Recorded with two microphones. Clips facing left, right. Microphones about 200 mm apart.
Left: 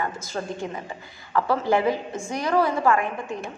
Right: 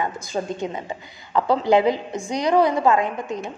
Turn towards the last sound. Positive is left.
turn(degrees=-20)  # may be behind; listen again after turning